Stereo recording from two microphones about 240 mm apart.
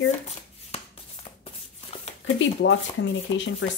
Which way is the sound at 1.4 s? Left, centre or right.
Left.